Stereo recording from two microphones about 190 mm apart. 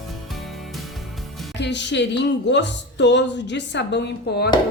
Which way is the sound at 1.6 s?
65° left (ahead or behind).